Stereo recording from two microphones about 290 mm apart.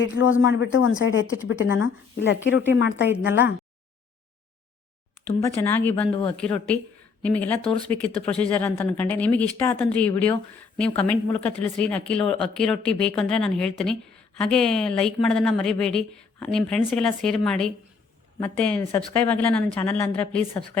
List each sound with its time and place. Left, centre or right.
0.0 s speech: left
5.4 s a woman's voice: centre